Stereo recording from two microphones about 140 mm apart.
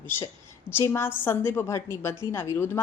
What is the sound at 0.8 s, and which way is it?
A woman's voice, 15° left (ahead or behind).